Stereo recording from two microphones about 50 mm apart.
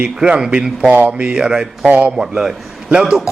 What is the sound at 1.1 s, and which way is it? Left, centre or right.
Speech, centre.